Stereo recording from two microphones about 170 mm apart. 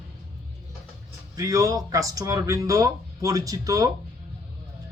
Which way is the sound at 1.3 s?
20° right (ahead or behind).